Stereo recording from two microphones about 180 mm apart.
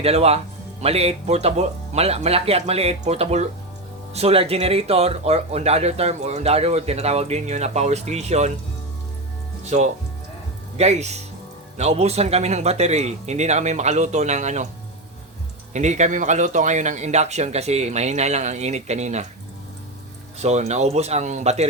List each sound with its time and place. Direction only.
0.0 s speech: 35° right (ahead or behind)
9.6 s speech: 40° right (ahead or behind)
15.7 s speech: 40° right (ahead or behind)
20.4 s speech: 40° right (ahead or behind)